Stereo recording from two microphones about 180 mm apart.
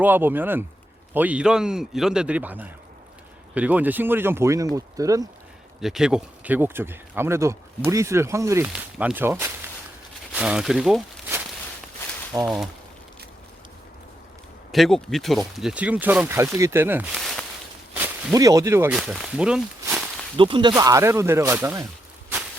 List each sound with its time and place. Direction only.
0.0 s speech: 10° right (ahead or behind)
5.8 s speech: 5° right (ahead or behind)
12.3 s speech: 15° right (ahead or behind)
14.7 s speech: centre (ahead or behind)
17.2 s a sound: centre (ahead or behind)
17.9 s a sound: 10° right (ahead or behind)
18.3 s speech: 20° right (ahead or behind)
20.3 s speech: 30° right (ahead or behind); by 21.8 s 15° right (ahead or behind)